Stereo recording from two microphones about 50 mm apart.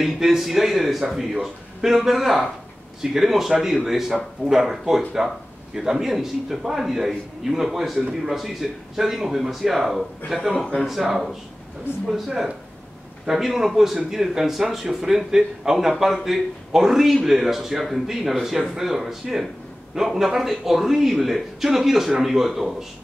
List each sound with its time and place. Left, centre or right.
0.0 s a man's voice: centre
11.9 s speech: left
12.3 s a man's voice: centre